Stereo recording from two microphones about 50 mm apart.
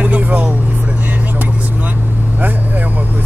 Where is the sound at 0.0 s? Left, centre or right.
Right.